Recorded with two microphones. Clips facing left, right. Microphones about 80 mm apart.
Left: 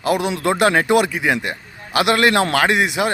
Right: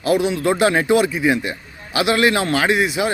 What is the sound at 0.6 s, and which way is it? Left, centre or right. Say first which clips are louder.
A man's voice: left 1 dB; left.